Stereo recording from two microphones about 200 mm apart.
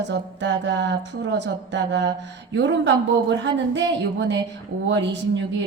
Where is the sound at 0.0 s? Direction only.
65° right (ahead or behind).